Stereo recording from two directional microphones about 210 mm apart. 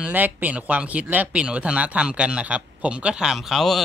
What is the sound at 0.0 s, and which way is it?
Speech, 10° right (ahead or behind).